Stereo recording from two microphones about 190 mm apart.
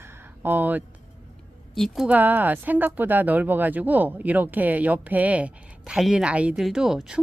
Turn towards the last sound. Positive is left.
turn(degrees=-5)  # may be behind; listen again after turning